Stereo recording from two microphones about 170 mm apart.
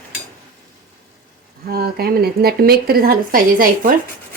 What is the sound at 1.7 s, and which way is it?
Speech, 65° right (ahead or behind).